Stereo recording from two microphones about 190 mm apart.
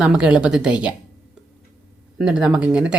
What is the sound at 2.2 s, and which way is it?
Speech, 5° right (ahead or behind).